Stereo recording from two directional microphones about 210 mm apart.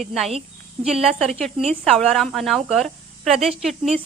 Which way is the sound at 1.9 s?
Centre (ahead or behind).